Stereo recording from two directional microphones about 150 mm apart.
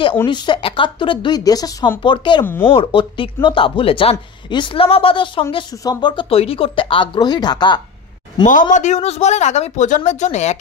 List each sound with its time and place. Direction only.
0.3 s speech: 35° left (ahead or behind)
2.4 s speech: 15° left (ahead or behind)
2.7 s speech: 35° left (ahead or behind)
8.7 s speech: 50° left (ahead or behind)